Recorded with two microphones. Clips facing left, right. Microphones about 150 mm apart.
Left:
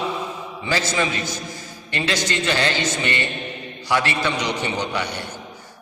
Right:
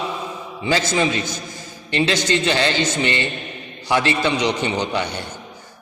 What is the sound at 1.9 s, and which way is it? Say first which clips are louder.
A man's voice: right 5 dB; 25° right (ahead or behind).